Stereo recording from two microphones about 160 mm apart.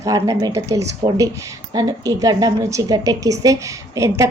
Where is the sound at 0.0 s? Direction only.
20° right (ahead or behind).